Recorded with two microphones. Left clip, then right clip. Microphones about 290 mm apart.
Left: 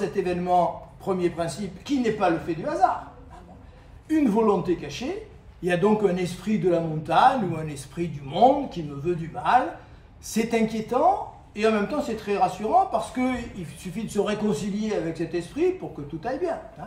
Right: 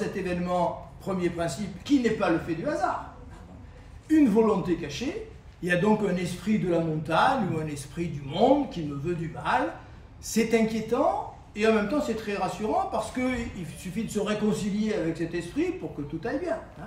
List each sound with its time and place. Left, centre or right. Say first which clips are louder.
0.1 s speech: left 6 dB; centre
4.1 s speech: even; centre